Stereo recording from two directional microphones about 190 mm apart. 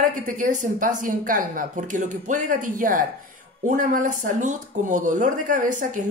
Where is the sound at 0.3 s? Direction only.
40° right (ahead or behind).